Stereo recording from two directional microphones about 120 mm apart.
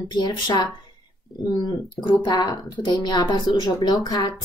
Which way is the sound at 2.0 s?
35° left (ahead or behind).